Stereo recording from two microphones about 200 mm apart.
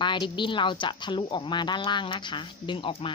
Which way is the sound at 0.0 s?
25° left (ahead or behind).